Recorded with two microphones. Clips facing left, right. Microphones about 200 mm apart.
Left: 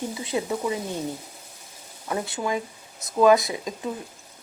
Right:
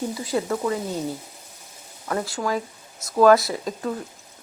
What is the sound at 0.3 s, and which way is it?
Speech, 15° left (ahead or behind).